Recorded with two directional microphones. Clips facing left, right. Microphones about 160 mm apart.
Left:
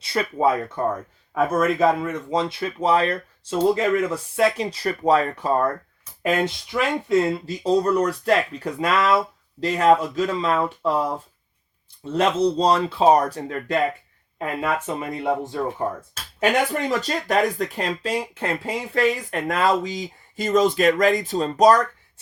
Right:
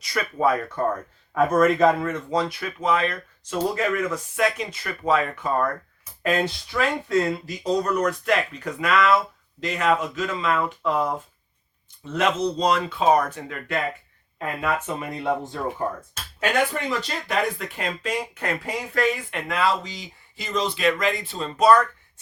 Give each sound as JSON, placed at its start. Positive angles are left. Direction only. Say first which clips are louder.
{"t": 0.0, "sound": "speech", "louder": "left 2 dB", "side_deg": 30}
{"t": 1.3, "sound": "speech", "louder": "right 2 dB", "side_deg": 5}
{"t": 2.3, "sound": "speech", "louder": "left 3 dB", "side_deg": 25}
{"t": 6.2, "sound": "speech", "louder": "left 1 dB", "side_deg": 20}
{"t": 14.3, "sound": "speech", "louder": "left 1 dB", "side_deg": 25}
{"t": 17.0, "sound": "speech", "louder": "left 4 dB", "side_deg": 45}